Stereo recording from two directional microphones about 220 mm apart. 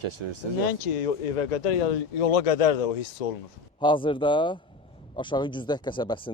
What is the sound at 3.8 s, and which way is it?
Speech, 20° left (ahead or behind).